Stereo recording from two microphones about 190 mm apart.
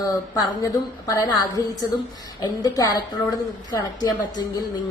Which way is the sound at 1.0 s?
20° left (ahead or behind).